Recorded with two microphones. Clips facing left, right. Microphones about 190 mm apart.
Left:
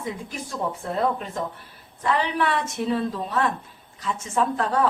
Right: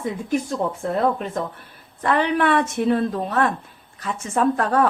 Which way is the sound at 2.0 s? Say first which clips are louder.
Right 4 dB; 55° right (ahead or behind).